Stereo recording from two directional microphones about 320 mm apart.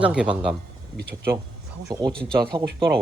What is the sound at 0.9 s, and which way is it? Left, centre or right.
Speech, right.